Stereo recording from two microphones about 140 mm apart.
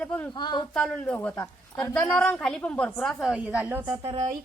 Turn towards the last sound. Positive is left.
turn(degrees=-25)  # may be behind; listen again after turning